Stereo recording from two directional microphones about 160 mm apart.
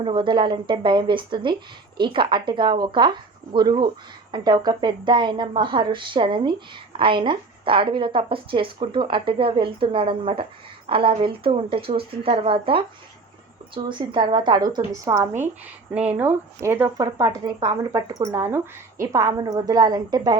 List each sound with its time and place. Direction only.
0.0 s speech: 30° right (ahead or behind)
16.0 s speech: 10° right (ahead or behind); by 20.3 s 25° right (ahead or behind)